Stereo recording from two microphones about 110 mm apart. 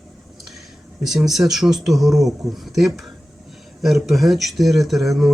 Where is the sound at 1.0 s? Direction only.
5° right (ahead or behind).